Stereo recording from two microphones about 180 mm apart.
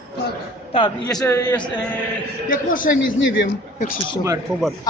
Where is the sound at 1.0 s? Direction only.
15° left (ahead or behind).